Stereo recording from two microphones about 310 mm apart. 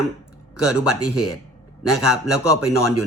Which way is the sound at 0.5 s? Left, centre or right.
Left.